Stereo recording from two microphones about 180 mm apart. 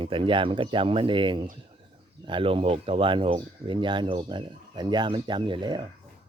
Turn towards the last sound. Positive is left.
turn(degrees=-25)  # may be behind; listen again after turning